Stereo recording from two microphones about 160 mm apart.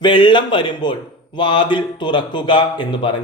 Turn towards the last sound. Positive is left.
turn(degrees=30)  # may be behind; listen again after turning